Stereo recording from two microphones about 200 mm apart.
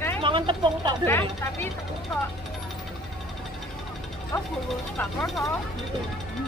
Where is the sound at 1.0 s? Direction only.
10° left (ahead or behind).